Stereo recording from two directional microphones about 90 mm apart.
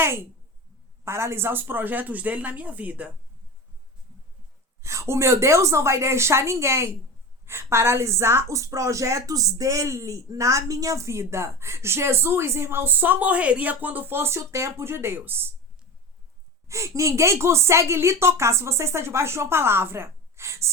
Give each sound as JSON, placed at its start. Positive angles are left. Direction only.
{"t": 0.0, "sound": "a woman's voice", "side_deg": -25}
{"t": 4.8, "sound": "a woman's voice", "side_deg": -30}
{"t": 16.6, "sound": "a woman's voice", "side_deg": -35}